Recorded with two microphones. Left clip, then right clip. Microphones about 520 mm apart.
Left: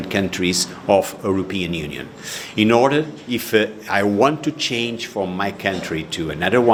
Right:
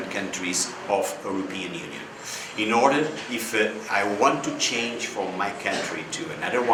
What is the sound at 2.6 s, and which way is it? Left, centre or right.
A man's voice, left.